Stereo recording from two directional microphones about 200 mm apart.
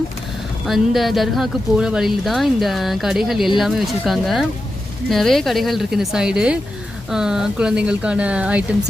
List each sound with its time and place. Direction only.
0.7 s speech: centre (ahead or behind)